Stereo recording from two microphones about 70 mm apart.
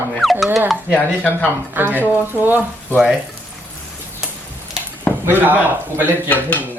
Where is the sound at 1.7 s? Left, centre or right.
Right.